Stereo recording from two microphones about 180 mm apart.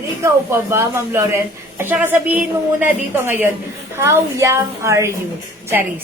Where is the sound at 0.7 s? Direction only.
15° right (ahead or behind).